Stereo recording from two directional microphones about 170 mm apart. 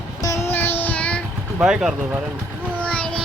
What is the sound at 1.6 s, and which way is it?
Speech, 5° right (ahead or behind).